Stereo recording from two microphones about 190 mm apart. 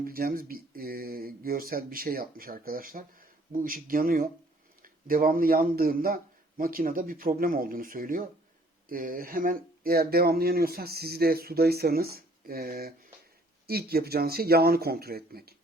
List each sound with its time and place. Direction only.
0.0 s speech: 50° right (ahead or behind)